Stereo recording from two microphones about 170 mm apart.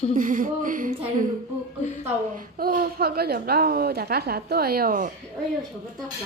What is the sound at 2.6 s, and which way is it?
A woman's voice, 60° right (ahead or behind).